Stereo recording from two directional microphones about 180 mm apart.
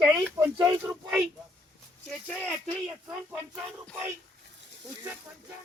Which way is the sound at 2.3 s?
5° left (ahead or behind).